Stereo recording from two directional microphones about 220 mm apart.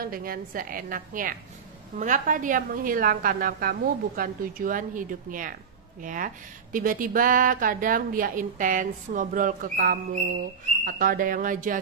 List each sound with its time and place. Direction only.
0.0 s speech: 40° right (ahead or behind)